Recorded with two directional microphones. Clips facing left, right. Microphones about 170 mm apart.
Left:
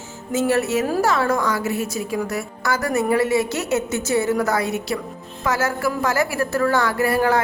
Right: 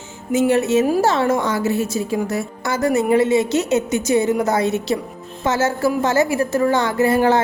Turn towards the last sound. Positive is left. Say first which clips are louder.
# right 3 dB
turn(degrees=-25)  # may be behind; listen again after turning